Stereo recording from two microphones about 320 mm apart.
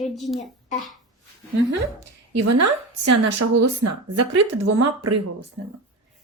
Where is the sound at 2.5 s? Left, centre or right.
Right.